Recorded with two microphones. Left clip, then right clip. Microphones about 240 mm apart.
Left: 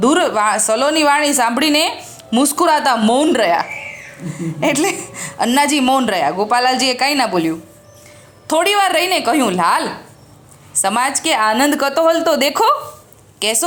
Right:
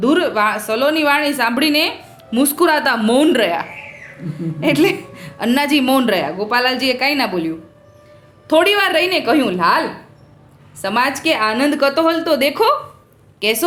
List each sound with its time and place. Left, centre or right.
0.0 s a woman's voice: centre